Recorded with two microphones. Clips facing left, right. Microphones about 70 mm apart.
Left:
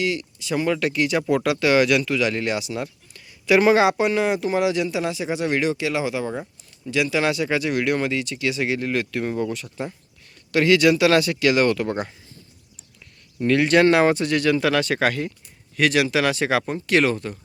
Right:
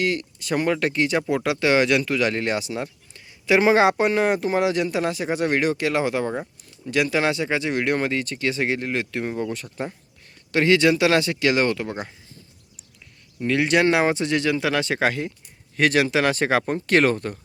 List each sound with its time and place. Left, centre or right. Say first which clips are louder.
0.0 s speech: right 1 dB; right
1.3 s speech: left 4 dB; right
9.5 s speech: even; right
13.4 s speech: left 3 dB; centre
15.7 s speech: even; right